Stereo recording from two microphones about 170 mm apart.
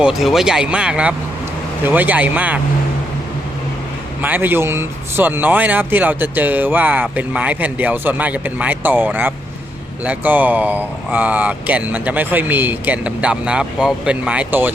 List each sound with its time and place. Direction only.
0.0 s speech: centre (ahead or behind)
4.2 s speech: 10° right (ahead or behind)